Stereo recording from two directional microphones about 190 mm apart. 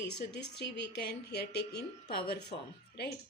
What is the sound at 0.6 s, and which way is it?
A woman's voice, 60° left (ahead or behind).